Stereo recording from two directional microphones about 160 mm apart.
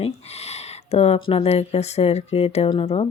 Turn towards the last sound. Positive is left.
turn(degrees=35)  # may be behind; listen again after turning